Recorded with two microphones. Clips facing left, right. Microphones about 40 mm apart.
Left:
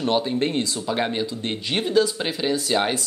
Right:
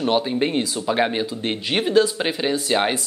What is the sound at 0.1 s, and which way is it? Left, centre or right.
Speech, centre.